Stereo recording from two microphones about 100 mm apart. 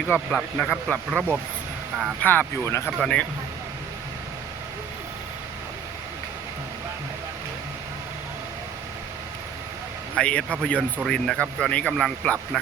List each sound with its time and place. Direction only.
0.3 s speech: 10° left (ahead or behind)
2.2 s speech: 20° left (ahead or behind)
3.0 s speech: 10° left (ahead or behind)
10.2 s speech: 10° left (ahead or behind)